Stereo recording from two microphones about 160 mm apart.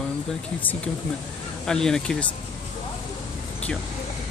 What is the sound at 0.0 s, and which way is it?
Speech, 5° left (ahead or behind).